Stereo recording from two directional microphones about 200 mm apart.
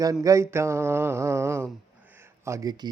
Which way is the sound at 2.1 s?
15° right (ahead or behind).